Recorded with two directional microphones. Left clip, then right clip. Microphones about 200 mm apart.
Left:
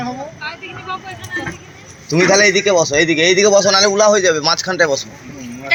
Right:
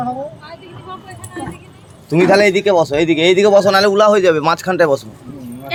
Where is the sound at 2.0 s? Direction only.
20° right (ahead or behind); by 4.9 s 40° right (ahead or behind).